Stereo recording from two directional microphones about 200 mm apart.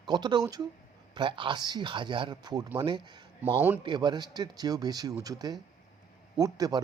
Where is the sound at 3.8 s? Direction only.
20° right (ahead or behind).